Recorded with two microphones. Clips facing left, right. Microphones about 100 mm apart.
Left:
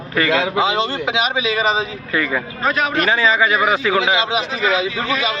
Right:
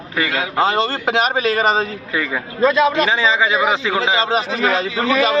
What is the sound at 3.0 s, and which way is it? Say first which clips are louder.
Speech: even; 20° right (ahead or behind).